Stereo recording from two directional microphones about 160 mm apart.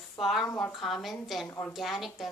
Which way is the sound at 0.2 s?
Centre (ahead or behind).